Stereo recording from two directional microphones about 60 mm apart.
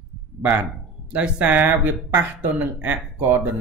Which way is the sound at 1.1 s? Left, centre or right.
Right.